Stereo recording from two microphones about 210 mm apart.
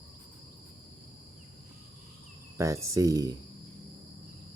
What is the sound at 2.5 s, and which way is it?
Speech, 15° right (ahead or behind).